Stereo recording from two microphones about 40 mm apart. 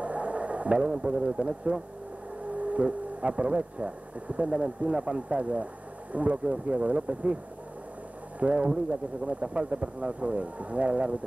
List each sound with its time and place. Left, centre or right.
0.0 s a sound: right
1.7 s speech: right
8.4 s speech: right